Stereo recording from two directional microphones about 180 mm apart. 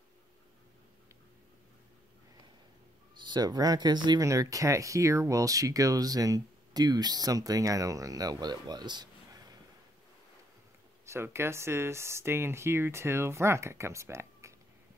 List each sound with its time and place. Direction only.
3.2 s speech: 25° right (ahead or behind)
11.1 s speech: 15° right (ahead or behind)